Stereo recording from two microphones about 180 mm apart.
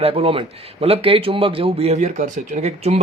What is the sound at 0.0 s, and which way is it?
A man's voice, 30° right (ahead or behind).